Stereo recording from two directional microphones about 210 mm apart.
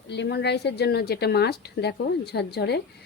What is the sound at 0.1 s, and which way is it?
A woman's voice, 55° left (ahead or behind).